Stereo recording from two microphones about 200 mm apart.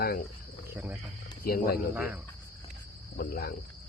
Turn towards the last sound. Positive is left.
turn(degrees=50)  # may be behind; listen again after turning